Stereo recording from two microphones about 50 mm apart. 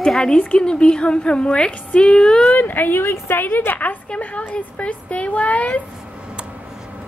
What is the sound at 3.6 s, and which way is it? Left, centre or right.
Speech, left.